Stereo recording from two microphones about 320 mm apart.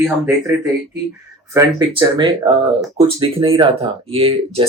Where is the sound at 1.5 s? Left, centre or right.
Centre.